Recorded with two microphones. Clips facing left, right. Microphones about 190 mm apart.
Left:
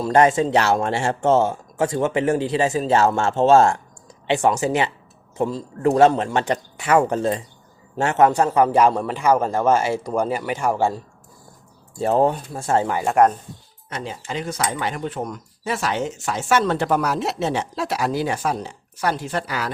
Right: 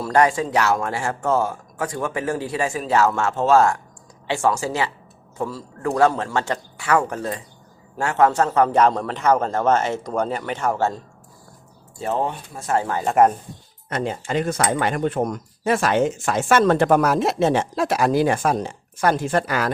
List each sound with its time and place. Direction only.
0.0 s a man's voice: 20° left (ahead or behind)
11.9 s speech: 35° left (ahead or behind)
13.1 s speech: 5° right (ahead or behind)
13.9 s speech: 55° right (ahead or behind)